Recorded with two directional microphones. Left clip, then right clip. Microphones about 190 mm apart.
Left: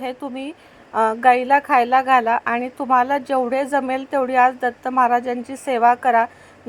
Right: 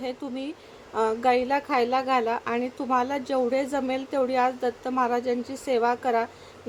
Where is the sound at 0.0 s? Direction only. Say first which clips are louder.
Left 5 dB; 15° left (ahead or behind).